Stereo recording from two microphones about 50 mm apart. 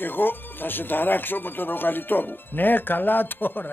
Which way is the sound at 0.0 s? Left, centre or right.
Left.